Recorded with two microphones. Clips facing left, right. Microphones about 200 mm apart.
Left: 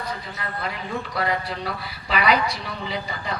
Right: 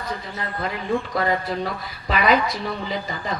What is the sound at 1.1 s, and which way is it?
A woman's voice, 40° right (ahead or behind).